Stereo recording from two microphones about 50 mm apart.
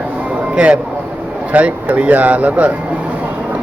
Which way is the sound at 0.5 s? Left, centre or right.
Centre.